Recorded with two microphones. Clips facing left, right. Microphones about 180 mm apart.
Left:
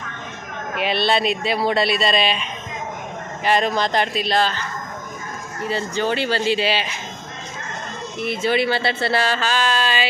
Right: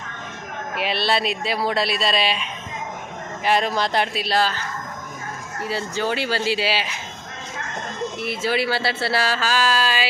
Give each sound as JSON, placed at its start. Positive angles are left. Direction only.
{"t": 0.8, "sound": "speech", "side_deg": -5}
{"t": 5.6, "sound": "speech", "side_deg": -5}
{"t": 8.2, "sound": "speech", "side_deg": -5}